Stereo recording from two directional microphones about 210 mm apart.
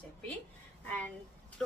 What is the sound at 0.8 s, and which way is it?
Speech, 5° left (ahead or behind).